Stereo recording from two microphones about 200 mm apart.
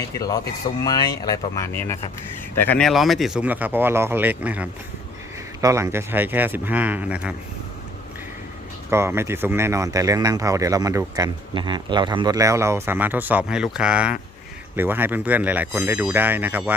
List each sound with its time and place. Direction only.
0.2 s speech: 15° left (ahead or behind); by 7.3 s 5° right (ahead or behind)
8.9 s speech: 10° right (ahead or behind)